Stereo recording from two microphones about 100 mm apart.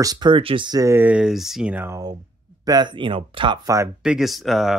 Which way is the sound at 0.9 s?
20° right (ahead or behind).